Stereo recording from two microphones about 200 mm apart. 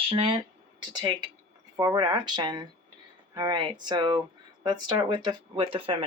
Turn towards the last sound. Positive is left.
turn(degrees=-25)  # may be behind; listen again after turning